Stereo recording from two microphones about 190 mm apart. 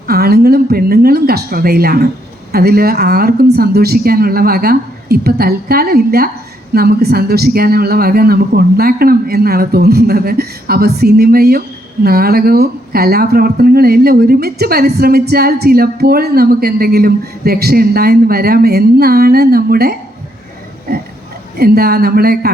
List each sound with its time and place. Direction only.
0.1 s speech: 55° right (ahead or behind)
20.9 s a sound: 55° right (ahead or behind)
21.6 s speech: 55° right (ahead or behind)